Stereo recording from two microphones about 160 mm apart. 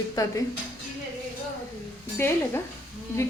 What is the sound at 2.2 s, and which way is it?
Speech, 15° left (ahead or behind).